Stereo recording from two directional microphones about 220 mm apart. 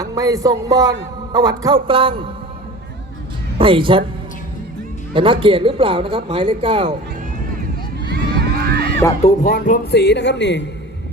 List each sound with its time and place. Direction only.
0.0 s a man's voice: 15° right (ahead or behind)
3.6 s speech: 25° right (ahead or behind)
5.1 s speech: 25° right (ahead or behind)
8.1 s a sound: 45° right (ahead or behind)
9.2 s speech: 40° left (ahead or behind)